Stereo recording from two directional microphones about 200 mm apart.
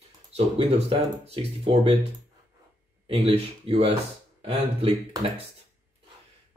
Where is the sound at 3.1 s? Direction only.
30° right (ahead or behind).